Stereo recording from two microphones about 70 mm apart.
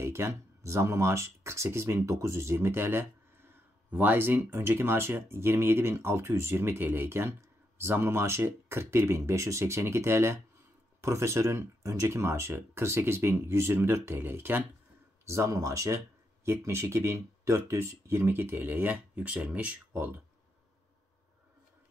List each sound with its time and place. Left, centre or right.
0.0 s speech: right
15.2 s speech: right
16.4 s speech: right; by 19.8 s centre
19.9 s speech: right